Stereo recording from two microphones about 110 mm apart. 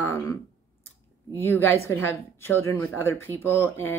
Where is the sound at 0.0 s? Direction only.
20° left (ahead or behind).